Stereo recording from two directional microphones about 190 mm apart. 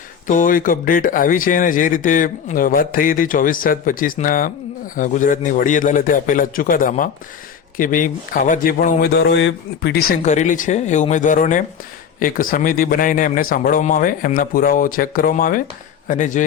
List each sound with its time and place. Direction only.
0.3 s speech: 45° left (ahead or behind); by 10.2 s 65° left (ahead or behind)
10.2 s speech: 40° left (ahead or behind)